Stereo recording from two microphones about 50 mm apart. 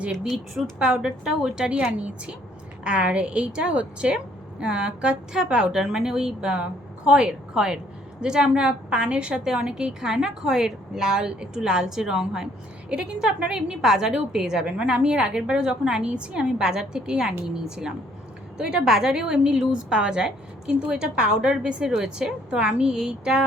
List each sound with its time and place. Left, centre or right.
0.8 s a woman's voice: centre